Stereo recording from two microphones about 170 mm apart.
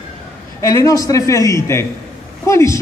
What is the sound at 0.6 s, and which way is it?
A man's voice, 20° left (ahead or behind).